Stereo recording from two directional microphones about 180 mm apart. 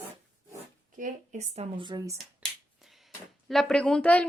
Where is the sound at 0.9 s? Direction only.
45° right (ahead or behind).